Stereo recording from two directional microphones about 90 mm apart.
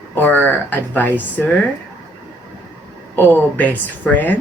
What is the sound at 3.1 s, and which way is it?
Speech, 25° left (ahead or behind).